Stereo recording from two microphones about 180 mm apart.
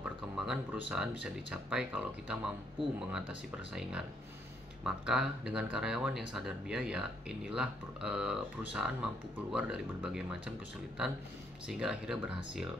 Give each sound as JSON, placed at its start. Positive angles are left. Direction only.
{"t": 0.4, "sound": "speech", "side_deg": -5}
{"t": 11.6, "sound": "speech", "side_deg": -5}